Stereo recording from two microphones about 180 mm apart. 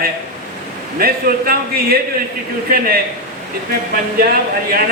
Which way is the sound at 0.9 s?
55° right (ahead or behind).